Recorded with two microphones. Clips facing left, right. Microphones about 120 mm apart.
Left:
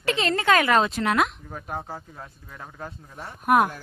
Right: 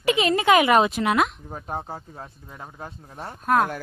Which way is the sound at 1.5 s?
25° right (ahead or behind).